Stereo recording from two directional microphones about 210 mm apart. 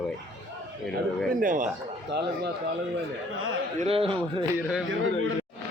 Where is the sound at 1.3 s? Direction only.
40° right (ahead or behind).